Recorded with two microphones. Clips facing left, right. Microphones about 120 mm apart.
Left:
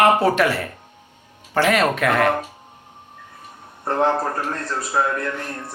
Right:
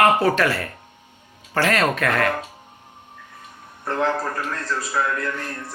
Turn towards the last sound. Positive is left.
turn(degrees=25)  # may be behind; listen again after turning